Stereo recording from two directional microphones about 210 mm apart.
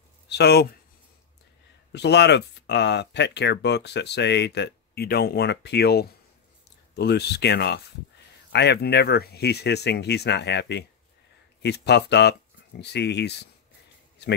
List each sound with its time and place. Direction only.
0.3 s speech: 50° left (ahead or behind)
1.9 s speech: 55° left (ahead or behind)